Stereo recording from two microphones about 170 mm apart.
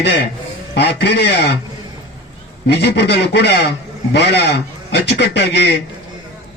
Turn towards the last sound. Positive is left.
turn(degrees=75)  # may be behind; listen again after turning